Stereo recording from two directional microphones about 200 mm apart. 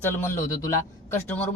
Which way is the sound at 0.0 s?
10° left (ahead or behind).